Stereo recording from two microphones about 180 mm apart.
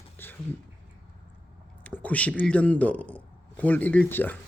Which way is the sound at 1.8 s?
10° left (ahead or behind).